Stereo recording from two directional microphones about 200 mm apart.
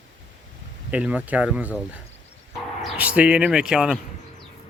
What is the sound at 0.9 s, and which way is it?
Speech, 5° right (ahead or behind).